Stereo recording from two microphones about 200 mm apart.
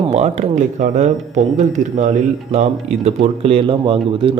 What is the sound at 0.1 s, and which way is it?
Speech, 35° right (ahead or behind).